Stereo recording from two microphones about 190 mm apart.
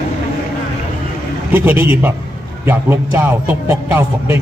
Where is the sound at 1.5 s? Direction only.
10° right (ahead or behind).